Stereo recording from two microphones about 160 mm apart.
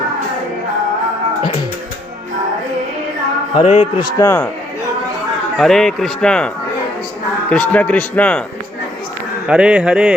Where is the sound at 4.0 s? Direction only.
20° left (ahead or behind).